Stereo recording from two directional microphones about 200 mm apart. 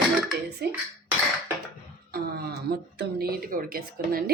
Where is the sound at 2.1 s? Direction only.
50° right (ahead or behind).